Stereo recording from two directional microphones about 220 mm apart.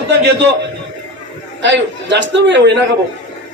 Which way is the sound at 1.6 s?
55° right (ahead or behind).